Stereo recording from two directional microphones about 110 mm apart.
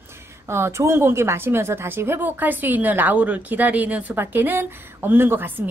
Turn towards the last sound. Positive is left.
turn(degrees=-20)  # may be behind; listen again after turning